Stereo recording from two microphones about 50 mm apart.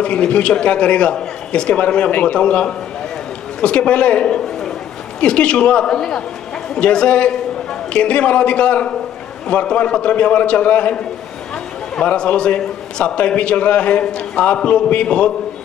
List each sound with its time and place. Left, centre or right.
0.0 s a man's voice: centre
12.1 s a man's voice: left